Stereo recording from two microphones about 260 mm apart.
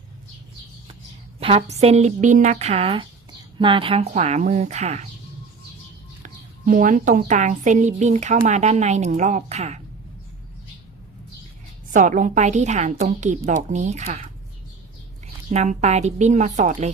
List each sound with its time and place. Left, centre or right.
1.4 s a woman's voice: right
6.2 s a woman's voice: right
11.9 s a woman's voice: right
15.4 s a woman's voice: right